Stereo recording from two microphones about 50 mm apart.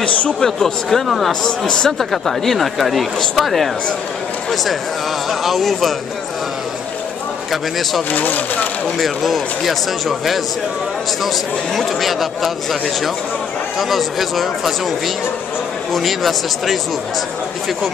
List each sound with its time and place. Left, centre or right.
0.4 s speech: centre
0.8 s speech: centre
5.4 s speech: centre
8.1 s speech: left
8.9 s speech: centre
15.9 s speech: centre